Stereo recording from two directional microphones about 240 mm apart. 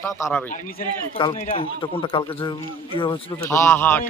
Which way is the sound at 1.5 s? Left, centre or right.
Left.